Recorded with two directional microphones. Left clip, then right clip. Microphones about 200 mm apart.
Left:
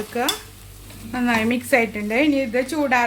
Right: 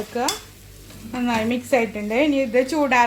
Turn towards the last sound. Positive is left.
turn(degrees=-15)  # may be behind; listen again after turning